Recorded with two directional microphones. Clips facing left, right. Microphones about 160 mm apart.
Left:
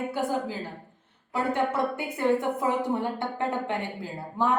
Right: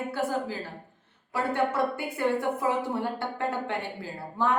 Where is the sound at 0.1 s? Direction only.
15° left (ahead or behind).